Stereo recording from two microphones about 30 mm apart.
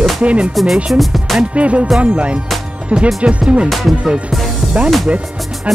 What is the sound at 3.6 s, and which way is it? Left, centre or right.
Speech, centre.